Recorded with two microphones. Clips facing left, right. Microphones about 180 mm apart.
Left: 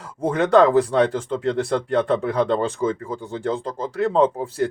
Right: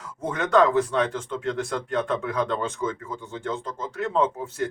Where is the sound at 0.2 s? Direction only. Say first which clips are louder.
Left 5 dB; 30° left (ahead or behind).